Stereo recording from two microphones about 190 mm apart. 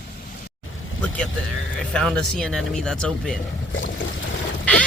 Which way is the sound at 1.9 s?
5° left (ahead or behind).